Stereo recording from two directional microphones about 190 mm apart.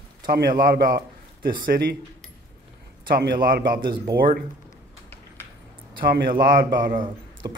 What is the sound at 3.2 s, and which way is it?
Speech, 55° right (ahead or behind).